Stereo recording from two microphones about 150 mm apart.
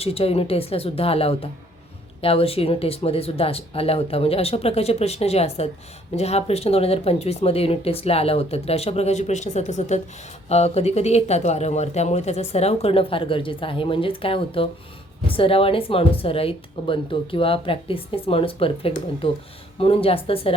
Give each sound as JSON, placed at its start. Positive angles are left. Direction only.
{"t": 0.0, "sound": "speech", "side_deg": 40}